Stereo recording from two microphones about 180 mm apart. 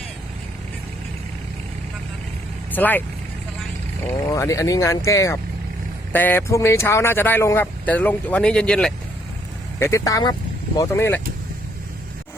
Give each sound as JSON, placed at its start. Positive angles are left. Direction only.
{"t": 2.7, "sound": "speech", "side_deg": 10}
{"t": 4.0, "sound": "speech", "side_deg": 15}
{"t": 9.7, "sound": "speech", "side_deg": 15}